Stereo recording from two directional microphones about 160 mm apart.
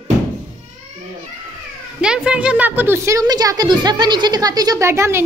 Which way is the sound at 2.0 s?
5° right (ahead or behind).